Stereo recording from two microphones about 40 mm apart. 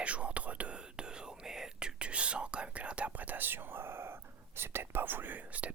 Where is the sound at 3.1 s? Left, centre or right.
Right.